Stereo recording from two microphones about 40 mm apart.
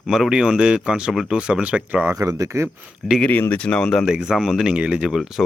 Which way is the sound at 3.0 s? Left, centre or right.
Centre.